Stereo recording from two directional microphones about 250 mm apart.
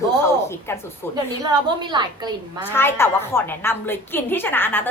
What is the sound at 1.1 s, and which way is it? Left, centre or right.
A woman's voice, centre.